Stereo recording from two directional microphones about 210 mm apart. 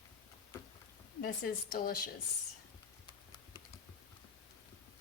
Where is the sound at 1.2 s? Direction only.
45° left (ahead or behind).